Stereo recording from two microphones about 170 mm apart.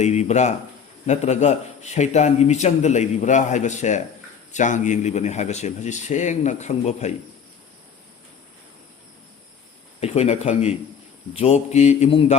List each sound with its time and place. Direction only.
0.0 s mantra: 40° left (ahead or behind)
1.0 s a man's voice: 40° left (ahead or behind)
10.0 s mantra: 40° left (ahead or behind)